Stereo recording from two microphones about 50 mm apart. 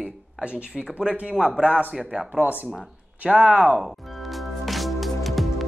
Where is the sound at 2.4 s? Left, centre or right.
Right.